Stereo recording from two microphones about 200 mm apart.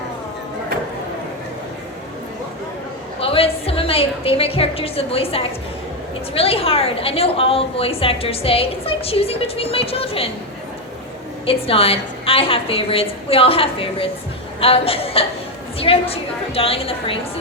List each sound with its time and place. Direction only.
3.2 s a sound: 30° left (ahead or behind)
6.3 s a woman's voice: 30° left (ahead or behind)
11.4 s a woman's voice: 30° left (ahead or behind)